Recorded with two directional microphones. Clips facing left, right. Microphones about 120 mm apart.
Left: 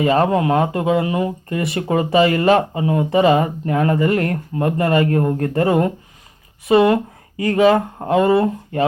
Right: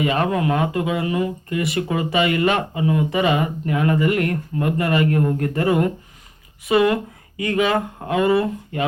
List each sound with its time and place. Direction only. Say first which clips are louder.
0.0 s speech: left 4 dB; 35° left (ahead or behind)